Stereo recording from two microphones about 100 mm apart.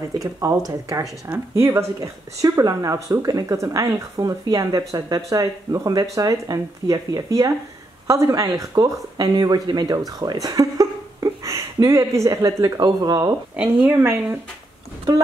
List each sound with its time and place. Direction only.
0.2 s speech: 35° right (ahead or behind)
1.5 s speech: 25° right (ahead or behind); by 13.3 s 40° right (ahead or behind)
13.6 s speech: 20° right (ahead or behind)